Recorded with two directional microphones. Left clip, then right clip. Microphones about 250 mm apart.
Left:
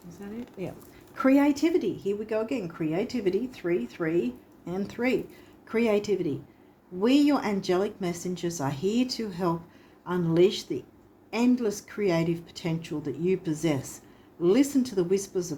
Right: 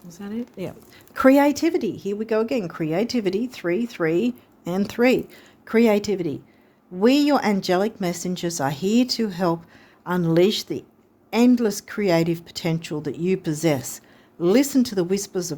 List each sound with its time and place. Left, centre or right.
0.1 s a woman's voice: right